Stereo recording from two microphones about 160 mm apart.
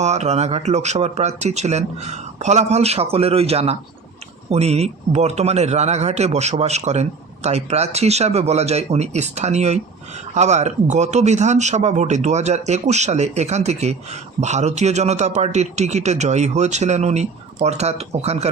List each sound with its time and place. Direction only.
0.0 s speech: 45° right (ahead or behind)